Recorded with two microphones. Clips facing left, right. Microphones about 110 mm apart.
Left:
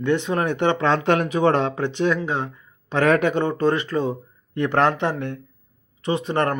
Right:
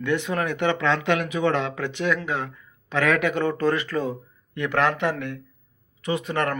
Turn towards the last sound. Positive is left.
turn(degrees=30)  # may be behind; listen again after turning